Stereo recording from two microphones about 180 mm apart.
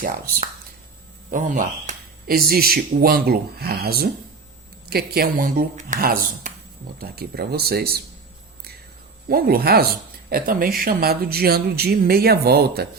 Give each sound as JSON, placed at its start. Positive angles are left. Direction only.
{"t": 1.3, "sound": "speech", "side_deg": -45}
{"t": 9.3, "sound": "speech", "side_deg": -55}